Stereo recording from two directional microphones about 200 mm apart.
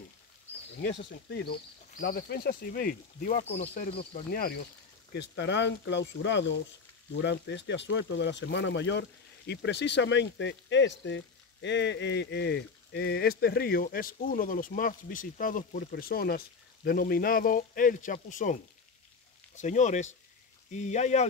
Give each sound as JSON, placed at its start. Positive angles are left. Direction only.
{"t": 0.8, "sound": "speech", "side_deg": 55}
{"t": 4.1, "sound": "speech", "side_deg": 45}
{"t": 5.1, "sound": "speech", "side_deg": 60}